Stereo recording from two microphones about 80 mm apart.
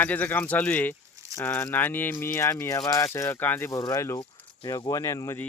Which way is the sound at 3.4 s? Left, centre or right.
Left.